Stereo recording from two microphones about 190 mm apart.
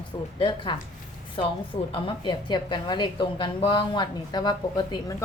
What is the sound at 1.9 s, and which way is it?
A woman's voice, 25° left (ahead or behind).